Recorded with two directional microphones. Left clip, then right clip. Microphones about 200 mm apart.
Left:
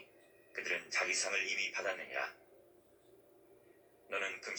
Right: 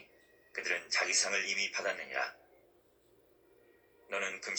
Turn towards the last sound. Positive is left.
turn(degrees=-40)  # may be behind; listen again after turning